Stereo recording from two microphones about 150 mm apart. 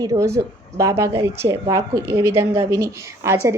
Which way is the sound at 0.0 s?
20° right (ahead or behind).